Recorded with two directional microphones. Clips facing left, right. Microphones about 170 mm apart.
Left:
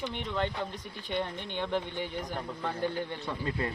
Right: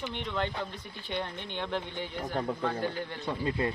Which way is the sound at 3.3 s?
20° right (ahead or behind).